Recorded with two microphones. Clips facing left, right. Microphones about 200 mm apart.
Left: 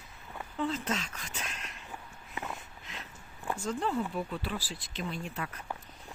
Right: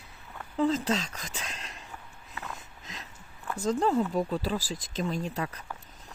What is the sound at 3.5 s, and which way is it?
Speech, 40° right (ahead or behind).